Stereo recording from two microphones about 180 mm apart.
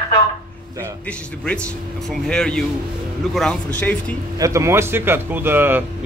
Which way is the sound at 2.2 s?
5° left (ahead or behind).